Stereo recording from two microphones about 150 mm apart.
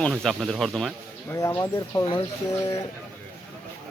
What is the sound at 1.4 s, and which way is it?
Speech, 20° left (ahead or behind).